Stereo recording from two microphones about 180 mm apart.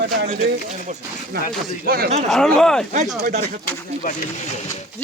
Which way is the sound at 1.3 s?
60° right (ahead or behind).